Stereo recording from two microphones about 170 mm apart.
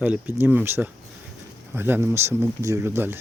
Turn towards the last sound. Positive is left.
turn(degrees=-15)  # may be behind; listen again after turning